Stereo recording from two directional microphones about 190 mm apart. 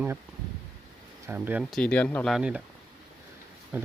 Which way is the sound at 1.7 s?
5° left (ahead or behind).